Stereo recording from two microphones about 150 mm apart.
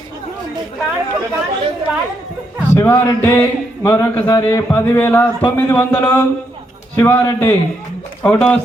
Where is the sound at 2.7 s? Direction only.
15° left (ahead or behind).